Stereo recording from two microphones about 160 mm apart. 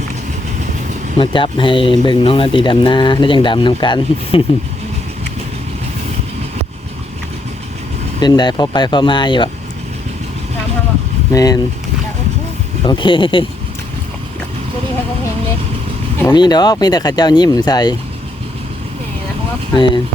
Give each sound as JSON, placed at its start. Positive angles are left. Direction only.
{"t": 1.2, "sound": "speech", "side_deg": 30}
{"t": 8.2, "sound": "speech", "side_deg": 25}
{"t": 11.3, "sound": "speech", "side_deg": 20}
{"t": 12.8, "sound": "speech", "side_deg": 30}
{"t": 16.3, "sound": "speech", "side_deg": 25}
{"t": 19.7, "sound": "speech", "side_deg": 30}